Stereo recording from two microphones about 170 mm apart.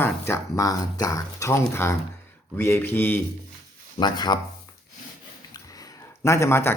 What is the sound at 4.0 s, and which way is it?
Speech, 25° left (ahead or behind).